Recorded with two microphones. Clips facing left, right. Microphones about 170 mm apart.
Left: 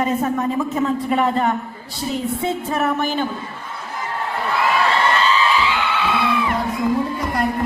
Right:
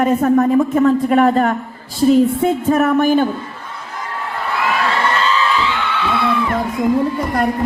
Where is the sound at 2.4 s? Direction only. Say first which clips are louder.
Right 7 dB; 50° right (ahead or behind).